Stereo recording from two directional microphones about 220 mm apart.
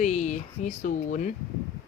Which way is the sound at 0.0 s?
35° left (ahead or behind).